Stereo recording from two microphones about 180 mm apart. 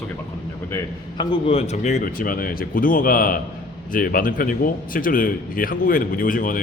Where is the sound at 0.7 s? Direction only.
20° left (ahead or behind); by 6.6 s 50° left (ahead or behind).